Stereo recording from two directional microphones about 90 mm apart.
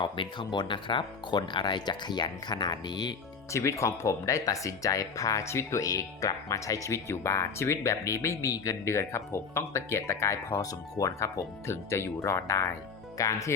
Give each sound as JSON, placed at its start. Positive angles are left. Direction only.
{"t": 0.0, "sound": "speech", "side_deg": 60}
{"t": 3.5, "sound": "speech", "side_deg": 35}